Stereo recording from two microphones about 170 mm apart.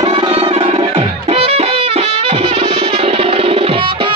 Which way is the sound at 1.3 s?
35° right (ahead or behind).